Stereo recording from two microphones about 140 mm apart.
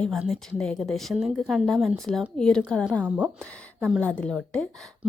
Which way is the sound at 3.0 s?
10° right (ahead or behind).